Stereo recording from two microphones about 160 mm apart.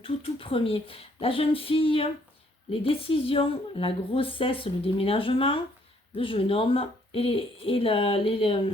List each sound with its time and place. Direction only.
0.0 s a woman's voice: 35° left (ahead or behind)